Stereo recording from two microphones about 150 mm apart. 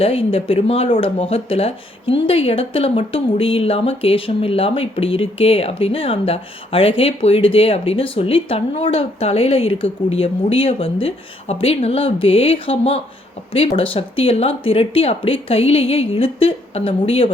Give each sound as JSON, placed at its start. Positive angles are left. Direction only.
{"t": 0.0, "sound": "speech", "side_deg": 40}